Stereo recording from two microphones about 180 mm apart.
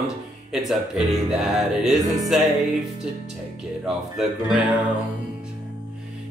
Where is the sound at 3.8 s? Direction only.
5° right (ahead or behind).